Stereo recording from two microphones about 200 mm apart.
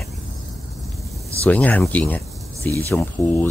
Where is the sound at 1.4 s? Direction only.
5° left (ahead or behind).